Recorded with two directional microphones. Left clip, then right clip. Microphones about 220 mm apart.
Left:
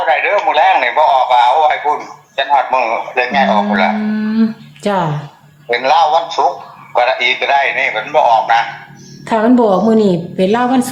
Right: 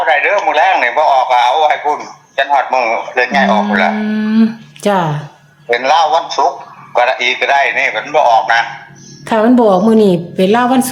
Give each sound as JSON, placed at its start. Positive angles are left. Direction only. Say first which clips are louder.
{"t": 0.0, "sound": "a man's voice", "louder": "right 1 dB", "side_deg": -30}